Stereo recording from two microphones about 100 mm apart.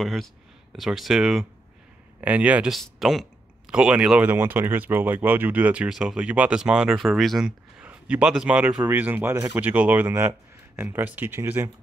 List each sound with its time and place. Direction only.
0.0 s speech: centre (ahead or behind)
2.1 s speech: 15° right (ahead or behind)
2.7 s speech: centre (ahead or behind)
7.8 s a man's voice: 15° right (ahead or behind)